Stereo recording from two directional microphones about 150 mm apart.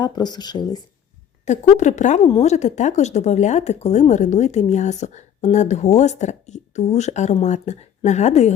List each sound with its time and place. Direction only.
0.0 s speech: 30° left (ahead or behind)
1.5 s speech: 50° left (ahead or behind)